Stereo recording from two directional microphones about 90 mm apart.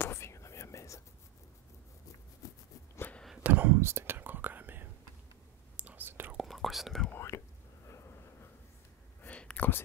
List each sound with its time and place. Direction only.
0.0 s whispering: 30° left (ahead or behind)
3.4 s whispering: 20° right (ahead or behind)
6.3 s whispering: centre (ahead or behind)
7.1 s whispering: 30° left (ahead or behind)
9.2 s whispering: 15° left (ahead or behind)